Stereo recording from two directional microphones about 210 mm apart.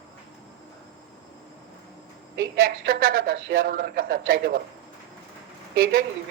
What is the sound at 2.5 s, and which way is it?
A man's voice, 45° right (ahead or behind).